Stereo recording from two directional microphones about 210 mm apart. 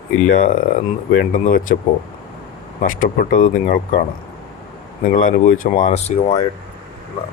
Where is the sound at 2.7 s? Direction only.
40° left (ahead or behind).